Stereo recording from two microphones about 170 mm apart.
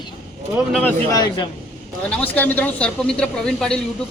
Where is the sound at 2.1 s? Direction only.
10° left (ahead or behind).